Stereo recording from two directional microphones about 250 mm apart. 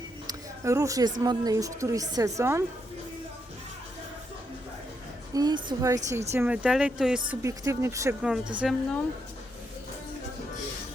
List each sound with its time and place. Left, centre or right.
0.3 s a sound: centre
1.2 s a woman's voice: centre
5.3 s a woman's voice: centre